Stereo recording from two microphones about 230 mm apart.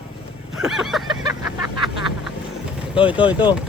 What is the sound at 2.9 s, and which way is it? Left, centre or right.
Speech, left.